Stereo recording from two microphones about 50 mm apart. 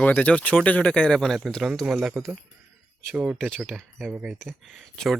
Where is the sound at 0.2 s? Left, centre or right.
Left.